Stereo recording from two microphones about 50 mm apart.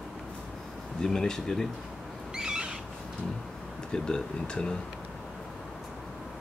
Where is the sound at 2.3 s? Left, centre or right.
Centre.